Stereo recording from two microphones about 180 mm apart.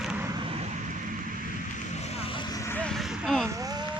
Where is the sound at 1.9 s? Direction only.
35° left (ahead or behind); by 3.4 s centre (ahead or behind).